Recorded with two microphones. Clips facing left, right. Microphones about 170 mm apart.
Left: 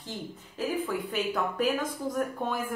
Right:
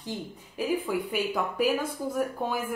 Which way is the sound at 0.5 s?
10° right (ahead or behind).